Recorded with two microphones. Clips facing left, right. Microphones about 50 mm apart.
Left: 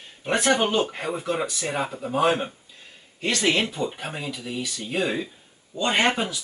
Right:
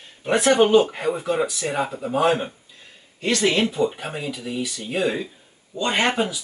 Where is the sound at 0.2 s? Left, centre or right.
Centre.